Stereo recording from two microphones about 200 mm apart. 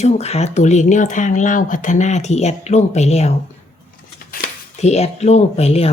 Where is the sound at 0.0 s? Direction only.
30° left (ahead or behind).